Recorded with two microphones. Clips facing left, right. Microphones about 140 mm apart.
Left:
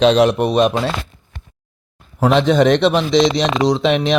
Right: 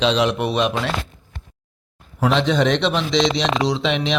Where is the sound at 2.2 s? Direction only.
50° left (ahead or behind).